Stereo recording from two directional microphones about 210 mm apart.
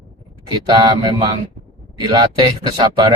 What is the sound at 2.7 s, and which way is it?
Speech, 20° right (ahead or behind).